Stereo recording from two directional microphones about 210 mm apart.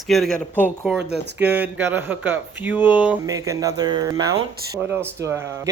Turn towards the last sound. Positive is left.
turn(degrees=-10)  # may be behind; listen again after turning